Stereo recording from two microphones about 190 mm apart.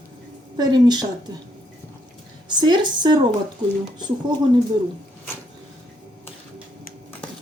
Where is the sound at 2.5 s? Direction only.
20° right (ahead or behind).